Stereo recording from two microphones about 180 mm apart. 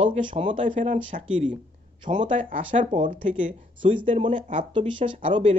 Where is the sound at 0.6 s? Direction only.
45° right (ahead or behind).